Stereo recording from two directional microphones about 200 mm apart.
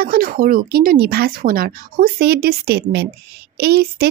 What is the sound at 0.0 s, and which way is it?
Speech, 45° right (ahead or behind).